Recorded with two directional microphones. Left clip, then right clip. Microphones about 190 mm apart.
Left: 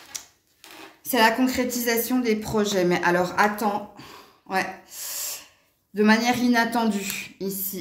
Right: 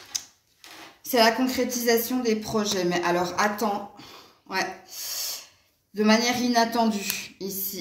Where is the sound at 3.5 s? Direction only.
55° left (ahead or behind).